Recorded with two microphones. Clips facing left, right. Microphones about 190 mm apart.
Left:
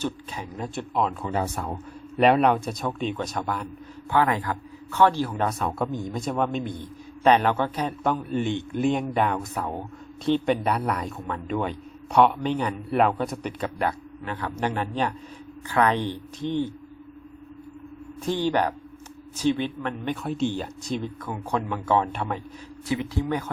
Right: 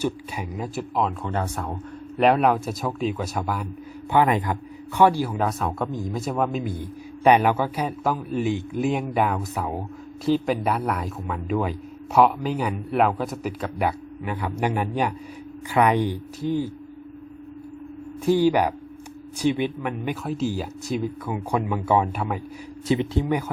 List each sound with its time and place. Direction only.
0.0 s speech: 5° right (ahead or behind)
4.1 s speech: 15° right (ahead or behind)
18.3 s speech: 10° right (ahead or behind)
22.9 s speech: 25° right (ahead or behind)